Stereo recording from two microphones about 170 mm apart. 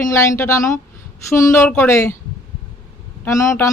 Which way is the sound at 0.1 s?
15° left (ahead or behind).